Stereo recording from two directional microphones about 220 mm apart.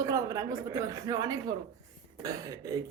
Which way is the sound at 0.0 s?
15° right (ahead or behind).